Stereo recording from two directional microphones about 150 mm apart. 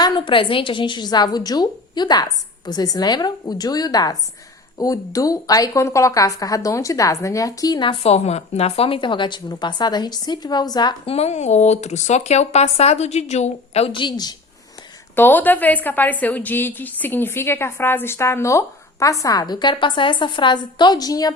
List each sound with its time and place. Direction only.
0.0 s a woman's voice: 35° left (ahead or behind)
15.1 s a woman's voice: 15° left (ahead or behind)